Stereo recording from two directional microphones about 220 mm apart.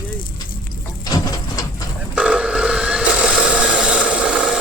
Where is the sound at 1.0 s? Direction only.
15° left (ahead or behind).